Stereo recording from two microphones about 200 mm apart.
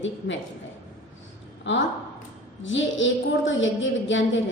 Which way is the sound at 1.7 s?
65° left (ahead or behind).